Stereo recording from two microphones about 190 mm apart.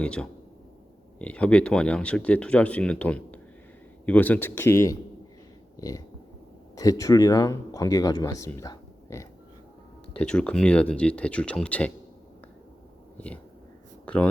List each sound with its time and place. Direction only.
0.0 s speech: 5° left (ahead or behind)
5.7 s a sound: 20° left (ahead or behind)
6.7 s speech: 15° left (ahead or behind)
10.2 s speech: 5° left (ahead or behind)
13.1 s speech: 5° left (ahead or behind)